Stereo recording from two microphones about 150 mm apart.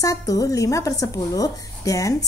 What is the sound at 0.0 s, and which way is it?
A woman's voice, 25° left (ahead or behind).